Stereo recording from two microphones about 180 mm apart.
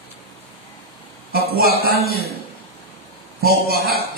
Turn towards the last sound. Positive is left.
turn(degrees=-55)  # may be behind; listen again after turning